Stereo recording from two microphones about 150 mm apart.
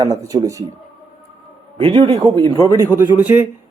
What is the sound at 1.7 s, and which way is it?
Speech, 35° right (ahead or behind).